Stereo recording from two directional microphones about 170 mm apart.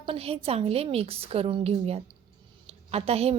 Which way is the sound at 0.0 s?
35° right (ahead or behind).